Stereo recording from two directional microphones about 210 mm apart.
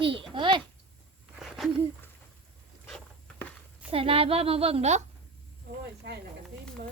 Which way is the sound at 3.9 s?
25° right (ahead or behind).